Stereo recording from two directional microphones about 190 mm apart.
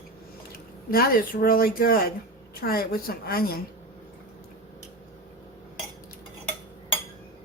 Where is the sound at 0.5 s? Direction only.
50° left (ahead or behind).